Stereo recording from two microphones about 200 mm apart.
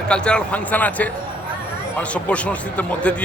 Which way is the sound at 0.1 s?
5° left (ahead or behind).